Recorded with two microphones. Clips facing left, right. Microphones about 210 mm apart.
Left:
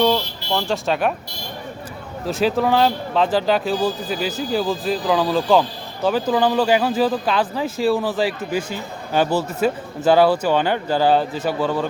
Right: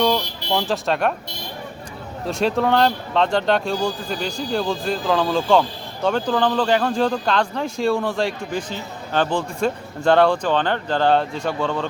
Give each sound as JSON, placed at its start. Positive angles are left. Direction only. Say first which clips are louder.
{"t": 0.2, "sound": "a sound", "louder": "right 1 dB", "side_deg": -15}
{"t": 0.7, "sound": "speech", "louder": "left 2 dB", "side_deg": 0}
{"t": 2.2, "sound": "speech", "louder": "left 1 dB", "side_deg": 0}